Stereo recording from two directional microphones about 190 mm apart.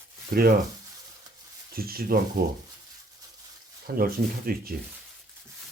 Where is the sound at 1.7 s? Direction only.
50° right (ahead or behind).